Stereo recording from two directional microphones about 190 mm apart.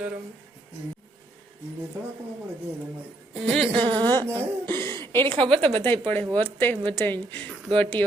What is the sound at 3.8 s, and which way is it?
Speech, 25° right (ahead or behind).